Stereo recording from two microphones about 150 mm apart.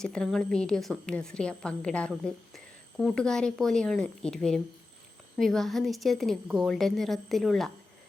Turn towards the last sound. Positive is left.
turn(degrees=0)  # may be behind; listen again after turning